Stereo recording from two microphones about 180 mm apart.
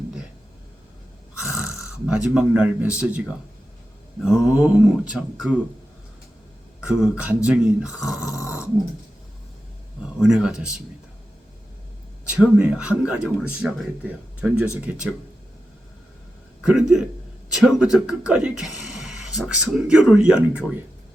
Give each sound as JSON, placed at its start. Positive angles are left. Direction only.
{"t": 2.0, "sound": "speech", "side_deg": -5}
{"t": 6.8, "sound": "speech", "side_deg": -5}
{"t": 8.2, "sound": "snoring", "side_deg": 15}
{"t": 10.2, "sound": "speech", "side_deg": -5}
{"t": 12.2, "sound": "speech", "side_deg": -5}
{"t": 16.6, "sound": "speech", "side_deg": -5}
{"t": 18.3, "sound": "a sound", "side_deg": -5}
{"t": 19.7, "sound": "speech", "side_deg": -5}